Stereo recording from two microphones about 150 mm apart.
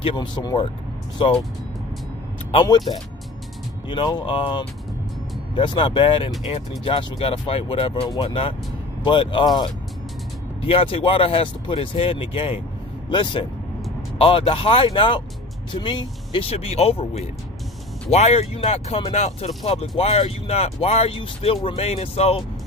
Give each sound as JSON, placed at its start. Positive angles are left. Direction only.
{"t": 0.0, "sound": "speech", "side_deg": 30}
{"t": 2.5, "sound": "speech", "side_deg": 30}
{"t": 3.9, "sound": "speech", "side_deg": 30}
{"t": 10.6, "sound": "speech", "side_deg": 40}